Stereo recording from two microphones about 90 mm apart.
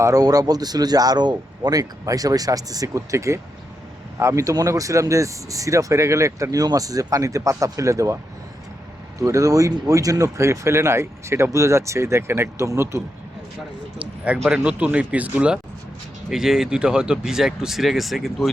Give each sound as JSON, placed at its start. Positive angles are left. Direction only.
{"t": 0.0, "sound": "speech", "side_deg": -45}
{"t": 14.5, "sound": "speech", "side_deg": -15}